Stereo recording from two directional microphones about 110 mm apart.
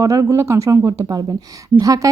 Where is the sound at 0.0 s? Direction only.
30° right (ahead or behind).